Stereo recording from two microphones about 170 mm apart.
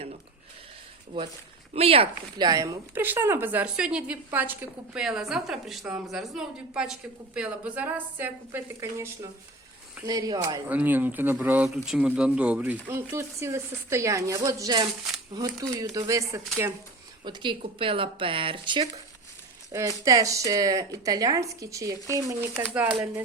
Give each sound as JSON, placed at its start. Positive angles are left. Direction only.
{"t": 1.1, "sound": "speech", "side_deg": -30}
{"t": 10.1, "sound": "speech", "side_deg": -20}
{"t": 10.7, "sound": "speech", "side_deg": -10}
{"t": 19.7, "sound": "speech", "side_deg": -20}